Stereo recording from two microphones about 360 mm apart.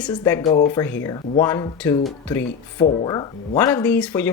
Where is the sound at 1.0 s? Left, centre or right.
Centre.